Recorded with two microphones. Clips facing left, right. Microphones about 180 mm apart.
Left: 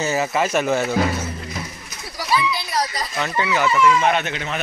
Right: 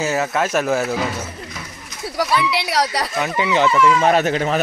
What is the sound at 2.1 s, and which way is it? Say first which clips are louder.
Speech: right 3 dB; 70° right (ahead or behind).